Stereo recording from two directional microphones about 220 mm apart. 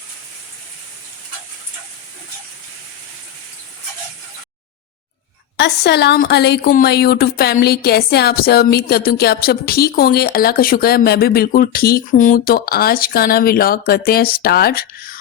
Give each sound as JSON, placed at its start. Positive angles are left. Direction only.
{"t": 5.5, "sound": "speech", "side_deg": 50}